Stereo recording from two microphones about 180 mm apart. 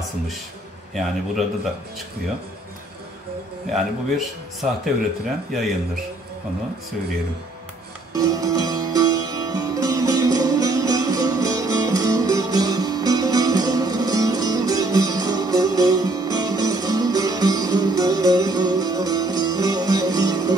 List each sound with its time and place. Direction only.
0.9 s speech: centre (ahead or behind)
3.7 s speech: centre (ahead or behind)
8.1 s music: 20° right (ahead or behind)